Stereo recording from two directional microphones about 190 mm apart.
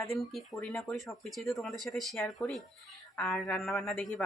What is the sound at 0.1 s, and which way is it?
Speech, centre (ahead or behind).